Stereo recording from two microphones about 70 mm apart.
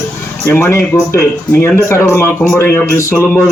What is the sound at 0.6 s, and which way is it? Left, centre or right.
Speech, left.